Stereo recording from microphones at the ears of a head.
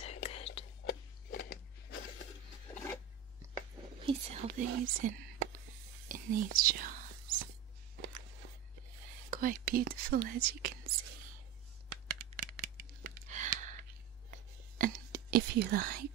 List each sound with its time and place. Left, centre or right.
0.0 s whispering: left
4.2 s whispering: right
11.9 s tearing: right